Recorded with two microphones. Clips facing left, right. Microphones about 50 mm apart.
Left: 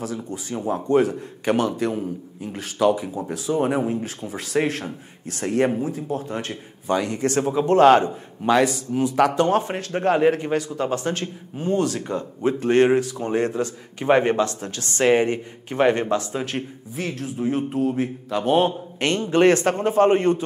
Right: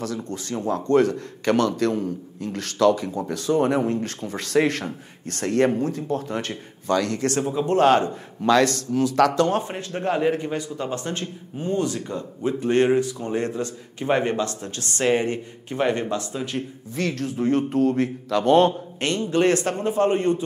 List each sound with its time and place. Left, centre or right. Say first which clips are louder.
0.0 s a man's voice: even; centre
6.0 s speech: right 1 dB; right
6.3 s a man's voice: right 1 dB; centre
6.9 s a man's voice: even; centre
8.5 s a man's voice: even; centre
10.5 s a man's voice: left 4 dB; centre
16.9 s a man's voice: right 3 dB; centre
18.9 s a man's voice: left 5 dB; left